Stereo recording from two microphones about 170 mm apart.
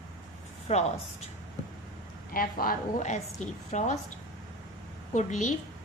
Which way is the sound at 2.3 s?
55° left (ahead or behind).